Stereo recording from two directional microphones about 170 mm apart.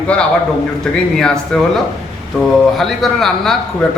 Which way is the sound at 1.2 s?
5° left (ahead or behind).